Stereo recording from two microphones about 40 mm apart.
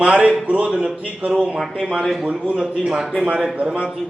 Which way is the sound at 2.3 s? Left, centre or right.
Right.